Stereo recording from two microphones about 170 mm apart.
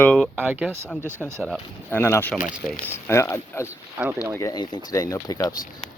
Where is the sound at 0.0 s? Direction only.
5° left (ahead or behind).